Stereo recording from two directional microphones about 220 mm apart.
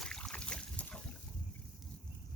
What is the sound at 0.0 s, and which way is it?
Boat, 5° left (ahead or behind).